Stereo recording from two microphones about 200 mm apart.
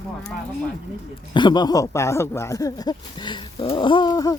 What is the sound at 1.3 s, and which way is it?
Speech, 20° left (ahead or behind).